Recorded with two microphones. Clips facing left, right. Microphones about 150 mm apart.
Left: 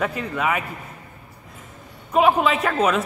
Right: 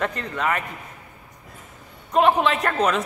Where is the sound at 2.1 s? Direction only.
5° left (ahead or behind).